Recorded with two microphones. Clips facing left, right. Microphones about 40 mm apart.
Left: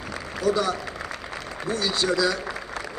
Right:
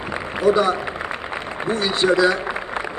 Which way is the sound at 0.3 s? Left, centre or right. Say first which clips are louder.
Right 6 dB; right.